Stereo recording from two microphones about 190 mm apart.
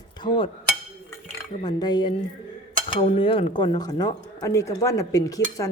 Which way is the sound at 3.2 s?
30° left (ahead or behind).